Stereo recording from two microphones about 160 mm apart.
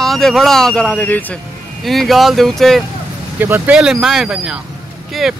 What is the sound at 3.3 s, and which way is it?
Speech, 10° right (ahead or behind).